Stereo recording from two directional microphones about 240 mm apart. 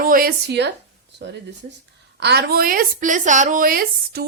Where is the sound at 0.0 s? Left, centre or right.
Right.